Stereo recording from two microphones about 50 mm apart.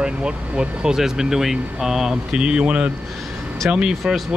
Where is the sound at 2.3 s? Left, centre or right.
Centre.